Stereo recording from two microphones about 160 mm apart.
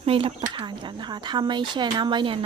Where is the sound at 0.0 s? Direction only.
35° right (ahead or behind).